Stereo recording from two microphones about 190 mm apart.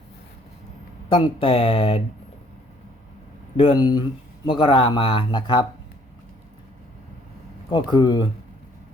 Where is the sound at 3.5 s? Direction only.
25° left (ahead or behind).